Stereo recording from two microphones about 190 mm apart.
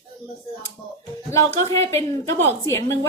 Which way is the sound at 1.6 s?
15° left (ahead or behind).